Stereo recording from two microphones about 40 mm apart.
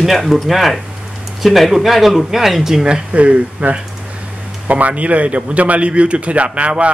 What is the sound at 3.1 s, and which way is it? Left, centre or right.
A man's voice, right.